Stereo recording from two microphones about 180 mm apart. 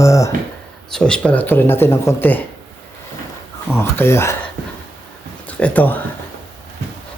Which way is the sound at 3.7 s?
10° left (ahead or behind).